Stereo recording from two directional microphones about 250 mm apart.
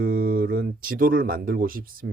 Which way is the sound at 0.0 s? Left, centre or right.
Right.